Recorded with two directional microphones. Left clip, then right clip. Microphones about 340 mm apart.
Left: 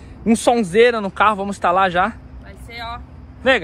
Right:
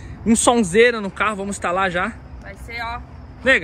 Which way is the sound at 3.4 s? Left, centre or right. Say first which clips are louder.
Even; centre.